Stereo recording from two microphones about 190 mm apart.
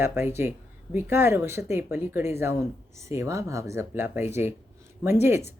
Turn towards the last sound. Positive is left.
turn(degrees=-15)  # may be behind; listen again after turning